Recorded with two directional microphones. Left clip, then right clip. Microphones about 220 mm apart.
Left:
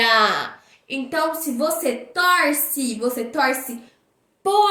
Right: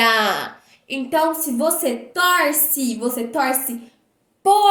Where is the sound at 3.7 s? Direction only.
10° right (ahead or behind).